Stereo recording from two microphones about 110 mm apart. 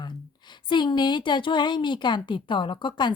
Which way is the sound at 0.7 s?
45° left (ahead or behind).